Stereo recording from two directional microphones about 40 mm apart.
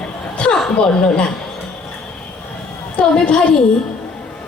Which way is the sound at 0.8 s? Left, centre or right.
Left.